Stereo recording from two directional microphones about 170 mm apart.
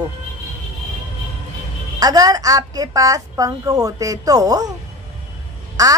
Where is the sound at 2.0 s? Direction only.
20° right (ahead or behind).